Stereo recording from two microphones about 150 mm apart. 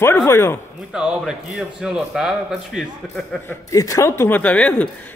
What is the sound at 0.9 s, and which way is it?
Speech, 5° right (ahead or behind).